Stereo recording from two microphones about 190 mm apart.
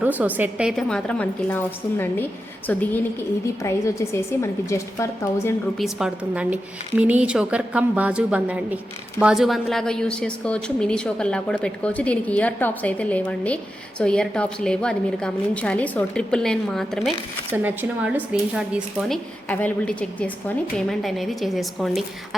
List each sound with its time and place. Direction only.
0.0 s a woman's voice: 10° right (ahead or behind); by 5.0 s 15° left (ahead or behind)
5.7 s a woman's voice: centre (ahead or behind)
17.5 s a woman's voice: 10° right (ahead or behind)